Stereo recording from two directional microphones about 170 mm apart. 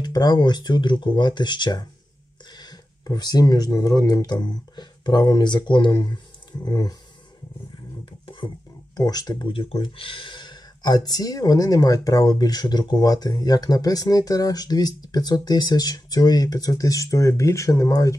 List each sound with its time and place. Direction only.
0.0 s speech: 25° left (ahead or behind)
8.0 s scratch: 30° left (ahead or behind)
8.9 s speech: 20° left (ahead or behind)